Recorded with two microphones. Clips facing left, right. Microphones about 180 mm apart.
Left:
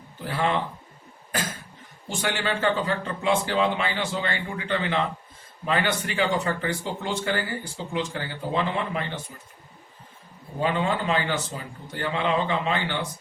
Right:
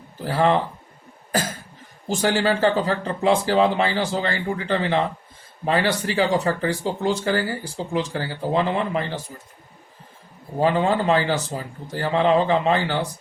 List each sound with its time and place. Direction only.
0.3 s speech: 40° right (ahead or behind)
2.0 s speech: 40° right (ahead or behind)
10.6 s speech: 40° right (ahead or behind)